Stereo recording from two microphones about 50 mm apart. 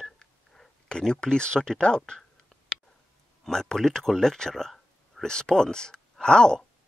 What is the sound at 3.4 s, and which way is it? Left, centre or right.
Speech, centre.